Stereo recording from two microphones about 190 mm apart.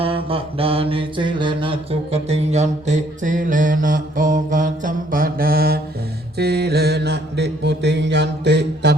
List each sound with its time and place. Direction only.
0.0 s mantra: 30° right (ahead or behind); by 9.0 s 65° right (ahead or behind)